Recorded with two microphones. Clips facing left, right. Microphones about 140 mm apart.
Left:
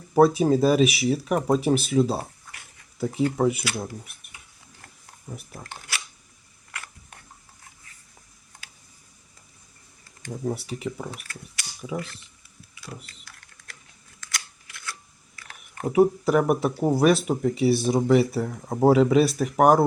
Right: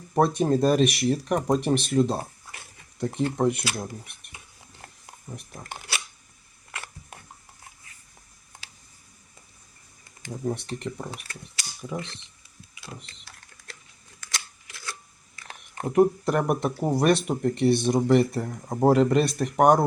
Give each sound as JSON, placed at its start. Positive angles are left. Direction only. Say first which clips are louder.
{"t": 0.1, "sound": "speech", "louder": "left 4 dB", "side_deg": 5}
{"t": 5.3, "sound": "speech", "louder": "left 1 dB", "side_deg": 5}
{"t": 5.9, "sound": "a sound", "louder": "right 1 dB", "side_deg": -30}
{"t": 6.7, "sound": "camera", "louder": "right 1 dB", "side_deg": -25}
{"t": 10.4, "sound": "speech", "louder": "left 1 dB", "side_deg": 5}
{"t": 11.1, "sound": "speech", "louder": "even", "side_deg": -30}
{"t": 14.3, "sound": "scissors", "louder": "even", "side_deg": -30}
{"t": 15.8, "sound": "speech", "louder": "left 1 dB", "side_deg": 0}